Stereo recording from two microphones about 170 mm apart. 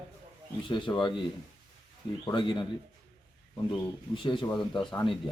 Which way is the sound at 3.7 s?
30° left (ahead or behind).